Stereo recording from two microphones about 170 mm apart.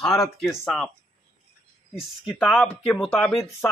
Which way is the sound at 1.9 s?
5° right (ahead or behind).